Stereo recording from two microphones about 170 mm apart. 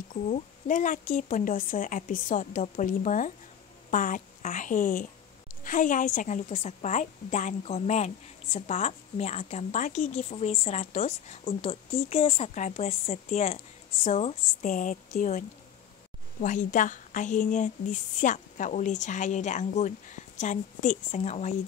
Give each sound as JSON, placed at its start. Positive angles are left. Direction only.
{"t": 0.1, "sound": "a woman's voice", "side_deg": 50}
{"t": 14.7, "sound": "speech", "side_deg": 50}